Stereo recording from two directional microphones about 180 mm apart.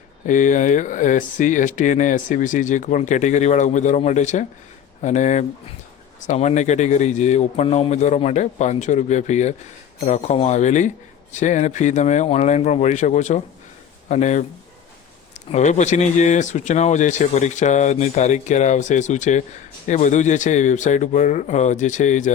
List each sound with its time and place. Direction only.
0.3 s speech: 45° left (ahead or behind)
15.5 s speech: 40° left (ahead or behind)